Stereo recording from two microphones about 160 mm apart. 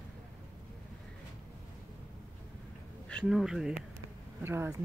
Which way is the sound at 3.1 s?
Centre (ahead or behind).